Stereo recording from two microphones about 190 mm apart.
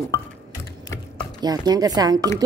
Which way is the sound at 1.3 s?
20° right (ahead or behind).